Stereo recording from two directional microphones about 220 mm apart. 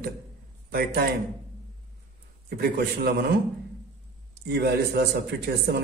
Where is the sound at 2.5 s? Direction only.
45° right (ahead or behind).